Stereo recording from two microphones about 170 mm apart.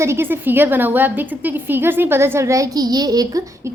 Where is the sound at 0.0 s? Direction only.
15° right (ahead or behind).